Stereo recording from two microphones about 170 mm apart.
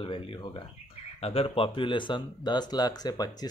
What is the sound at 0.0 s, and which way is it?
Speech, 30° left (ahead or behind).